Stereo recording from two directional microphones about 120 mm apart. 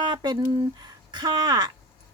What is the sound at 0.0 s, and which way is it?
A woman's voice, 40° right (ahead or behind).